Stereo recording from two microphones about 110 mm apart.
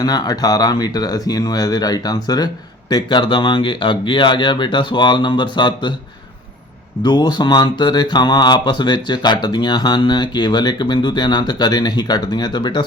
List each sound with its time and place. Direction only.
0.0 s speech: 35° left (ahead or behind)
7.0 s speech: 40° left (ahead or behind)